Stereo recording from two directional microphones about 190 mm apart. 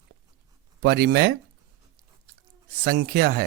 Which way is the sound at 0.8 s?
60° right (ahead or behind).